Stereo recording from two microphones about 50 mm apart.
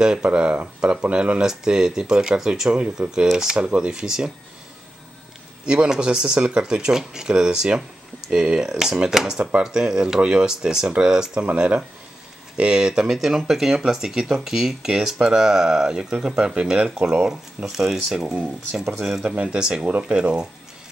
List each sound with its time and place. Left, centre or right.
0.2 s speech: right
1.4 s speech: centre
5.7 s speech: centre
13.1 s speech: centre
17.6 s speech: centre
18.2 s speech: right
18.9 s speech: centre
19.3 s speech: right